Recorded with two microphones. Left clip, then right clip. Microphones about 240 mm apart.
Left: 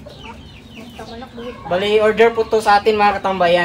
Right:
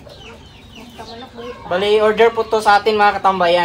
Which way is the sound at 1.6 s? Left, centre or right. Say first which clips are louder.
Right 1 dB; centre.